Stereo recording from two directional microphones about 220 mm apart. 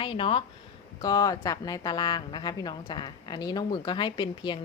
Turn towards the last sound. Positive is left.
turn(degrees=20)  # may be behind; listen again after turning